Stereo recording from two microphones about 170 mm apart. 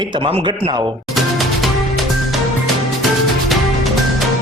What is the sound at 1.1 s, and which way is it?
Music, centre (ahead or behind).